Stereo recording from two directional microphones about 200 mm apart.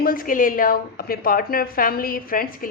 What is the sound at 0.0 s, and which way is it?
A woman's voice, 45° left (ahead or behind).